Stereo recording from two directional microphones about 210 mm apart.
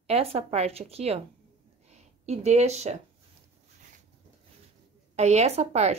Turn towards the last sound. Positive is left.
turn(degrees=-30)  # may be behind; listen again after turning